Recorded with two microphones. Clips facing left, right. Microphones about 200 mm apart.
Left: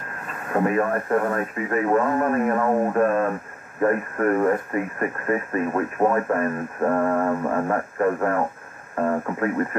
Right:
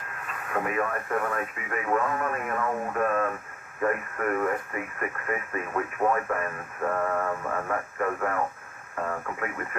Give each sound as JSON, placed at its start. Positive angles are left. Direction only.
{"t": 0.3, "sound": "speech", "side_deg": 35}